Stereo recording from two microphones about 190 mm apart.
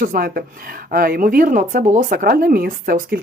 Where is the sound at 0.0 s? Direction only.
50° right (ahead or behind).